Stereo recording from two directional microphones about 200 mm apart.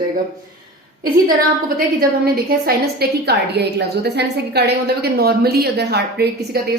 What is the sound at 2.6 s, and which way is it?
A woman's voice, 50° right (ahead or behind).